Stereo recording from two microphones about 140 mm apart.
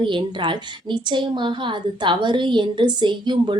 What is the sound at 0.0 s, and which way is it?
A woman's voice, 35° right (ahead or behind).